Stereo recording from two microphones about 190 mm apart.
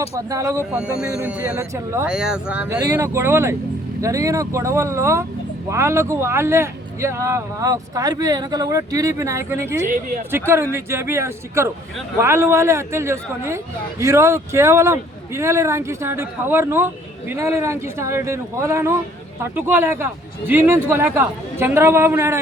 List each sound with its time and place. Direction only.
0.2 s speech: 15° right (ahead or behind)
0.7 s speech: 5° right (ahead or behind)
2.0 s speech: 5° right (ahead or behind)
9.9 s speech: 45° right (ahead or behind)
10.3 s speech: 15° right (ahead or behind)